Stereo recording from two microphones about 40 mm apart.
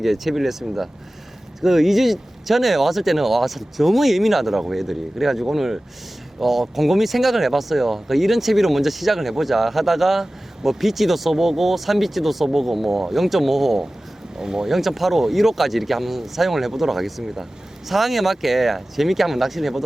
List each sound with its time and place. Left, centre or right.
0.0 s speech: centre
14.7 s speech: centre